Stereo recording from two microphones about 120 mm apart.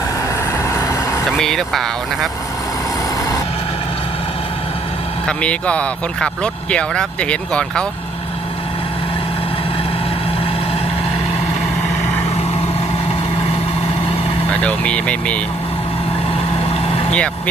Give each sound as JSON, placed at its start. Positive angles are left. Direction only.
{"t": 0.7, "sound": "vehicle", "side_deg": 25}
{"t": 1.4, "sound": "speech", "side_deg": 5}
{"t": 5.2, "sound": "speech", "side_deg": 10}
{"t": 14.6, "sound": "speech", "side_deg": 10}
{"t": 17.1, "sound": "speech", "side_deg": 10}